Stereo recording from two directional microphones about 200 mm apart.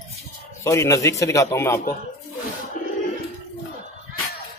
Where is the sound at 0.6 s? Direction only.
15° left (ahead or behind).